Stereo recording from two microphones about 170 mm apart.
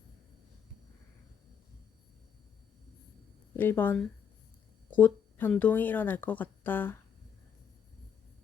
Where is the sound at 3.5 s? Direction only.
10° left (ahead or behind).